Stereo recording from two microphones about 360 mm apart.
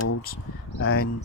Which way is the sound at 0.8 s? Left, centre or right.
Left.